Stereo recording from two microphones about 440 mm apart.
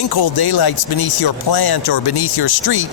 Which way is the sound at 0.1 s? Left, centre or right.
Left.